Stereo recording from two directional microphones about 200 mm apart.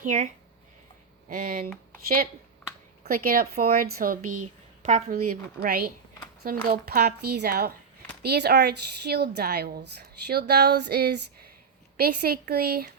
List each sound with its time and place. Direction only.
0.0 s speech: 40° right (ahead or behind)
1.3 s a woman's voice: 45° right (ahead or behind)
3.1 s a woman's voice: 45° right (ahead or behind)